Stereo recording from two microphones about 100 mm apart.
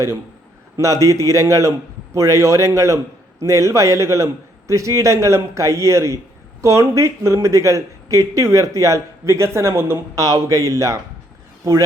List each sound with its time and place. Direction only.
0.8 s speech: 30° right (ahead or behind)